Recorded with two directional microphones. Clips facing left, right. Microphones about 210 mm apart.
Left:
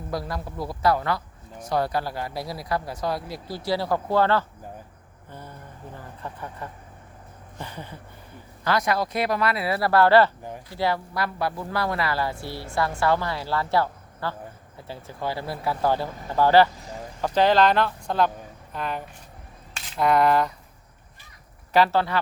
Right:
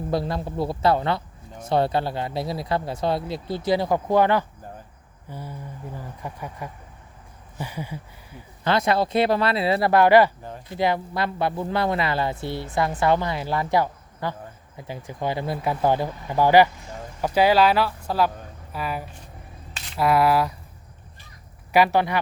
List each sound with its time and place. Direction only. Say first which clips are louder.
0.1 s speech: right 4 dB; 25° right (ahead or behind); by 8.4 s 10° right (ahead or behind)
8.6 s speech: right 3 dB; 25° right (ahead or behind); by 20.5 s 5° right (ahead or behind)
21.7 s speech: right 1 dB; 15° right (ahead or behind)